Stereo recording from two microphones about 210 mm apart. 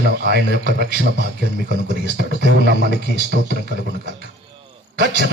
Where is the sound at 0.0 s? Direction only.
50° right (ahead or behind).